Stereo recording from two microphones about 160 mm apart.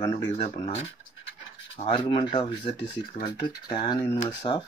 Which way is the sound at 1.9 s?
30° left (ahead or behind).